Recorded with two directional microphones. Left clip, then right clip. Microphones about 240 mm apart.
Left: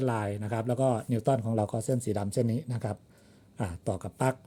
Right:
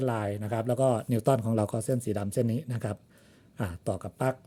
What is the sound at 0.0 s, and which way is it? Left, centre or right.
Speech, centre.